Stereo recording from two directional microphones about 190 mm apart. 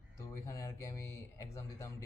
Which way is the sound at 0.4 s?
15° left (ahead or behind).